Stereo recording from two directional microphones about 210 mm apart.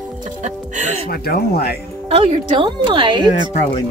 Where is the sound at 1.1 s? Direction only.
45° left (ahead or behind).